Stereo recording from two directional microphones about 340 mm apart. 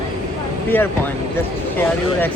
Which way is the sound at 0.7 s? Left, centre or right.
Centre.